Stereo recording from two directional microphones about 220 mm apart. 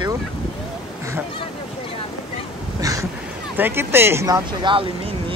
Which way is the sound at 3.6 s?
10° right (ahead or behind).